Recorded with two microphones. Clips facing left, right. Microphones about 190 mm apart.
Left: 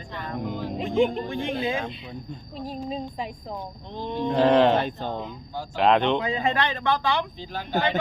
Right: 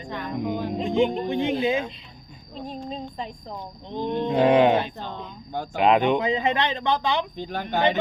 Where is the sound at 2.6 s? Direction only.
5° left (ahead or behind).